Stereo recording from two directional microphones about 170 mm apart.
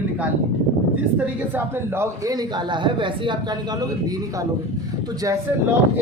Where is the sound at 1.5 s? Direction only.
15° right (ahead or behind).